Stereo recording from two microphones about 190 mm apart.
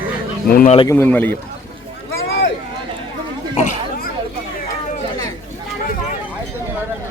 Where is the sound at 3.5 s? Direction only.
40° left (ahead or behind).